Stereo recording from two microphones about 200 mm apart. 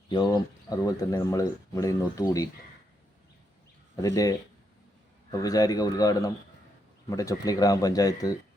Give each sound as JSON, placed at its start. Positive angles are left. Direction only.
{"t": 0.1, "sound": "speech", "side_deg": 20}
{"t": 3.9, "sound": "speech", "side_deg": 15}